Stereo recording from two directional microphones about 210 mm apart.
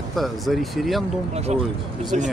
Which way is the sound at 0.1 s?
Centre (ahead or behind).